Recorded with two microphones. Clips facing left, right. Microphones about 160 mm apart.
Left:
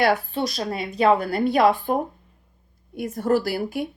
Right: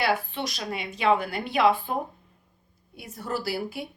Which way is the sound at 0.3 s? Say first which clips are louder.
Left 6 dB; 40° left (ahead or behind).